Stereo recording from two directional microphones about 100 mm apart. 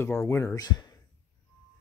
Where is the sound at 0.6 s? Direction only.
40° left (ahead or behind).